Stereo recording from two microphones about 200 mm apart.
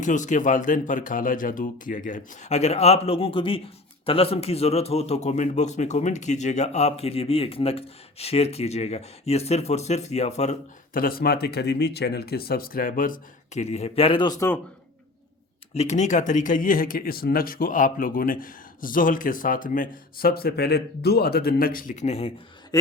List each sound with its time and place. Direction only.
0.0 s a man's voice: 40° left (ahead or behind); by 14.6 s 15° left (ahead or behind)
15.7 s speech: 35° left (ahead or behind)
22.7 s speech: 15° left (ahead or behind)